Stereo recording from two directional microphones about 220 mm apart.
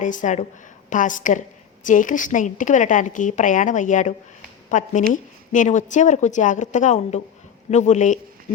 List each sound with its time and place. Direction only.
0.0 s a woman's voice: 35° left (ahead or behind)